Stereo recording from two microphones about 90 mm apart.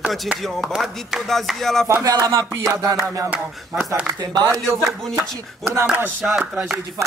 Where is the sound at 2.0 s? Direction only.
40° right (ahead or behind).